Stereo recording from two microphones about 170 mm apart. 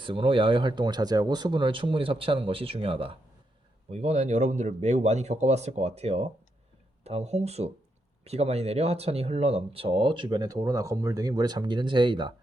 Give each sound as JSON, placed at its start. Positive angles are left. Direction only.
{"t": 0.0, "sound": "speech", "side_deg": -30}